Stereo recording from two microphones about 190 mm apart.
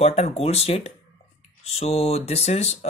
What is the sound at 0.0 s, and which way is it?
Speech, 35° left (ahead or behind).